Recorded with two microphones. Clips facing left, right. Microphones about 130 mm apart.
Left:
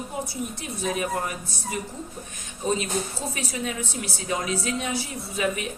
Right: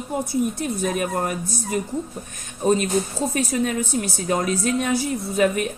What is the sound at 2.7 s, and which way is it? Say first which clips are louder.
Speech: right 7 dB; 45° right (ahead or behind).